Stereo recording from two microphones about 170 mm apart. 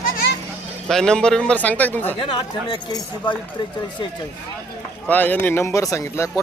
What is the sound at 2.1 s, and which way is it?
Speech, 30° left (ahead or behind).